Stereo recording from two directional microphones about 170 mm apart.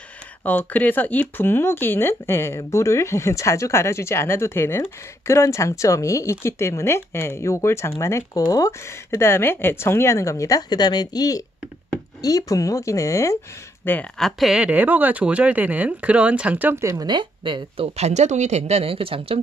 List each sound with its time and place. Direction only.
0.5 s speech: 10° left (ahead or behind)
13.8 s speech: 5° left (ahead or behind); by 16.9 s 10° right (ahead or behind)
16.9 s speech: 25° right (ahead or behind)